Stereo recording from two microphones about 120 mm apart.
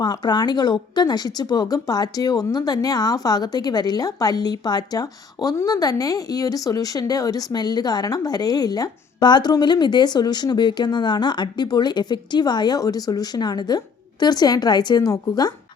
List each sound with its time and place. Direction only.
0.0 s speech: 35° left (ahead or behind)